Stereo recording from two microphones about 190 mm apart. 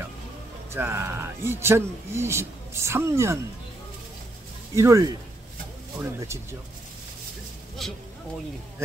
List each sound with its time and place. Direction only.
0.7 s speech: 15° right (ahead or behind)
4.7 s speech: 15° right (ahead or behind)
7.8 s speech: centre (ahead or behind)